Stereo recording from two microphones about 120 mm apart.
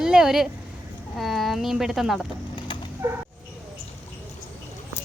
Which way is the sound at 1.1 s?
Centre (ahead or behind).